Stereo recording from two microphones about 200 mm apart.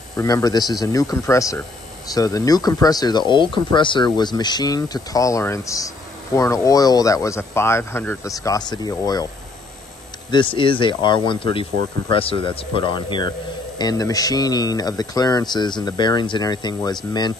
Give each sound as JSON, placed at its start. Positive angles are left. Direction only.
{"t": 0.1, "sound": "speech", "side_deg": 15}
{"t": 10.3, "sound": "speech", "side_deg": 25}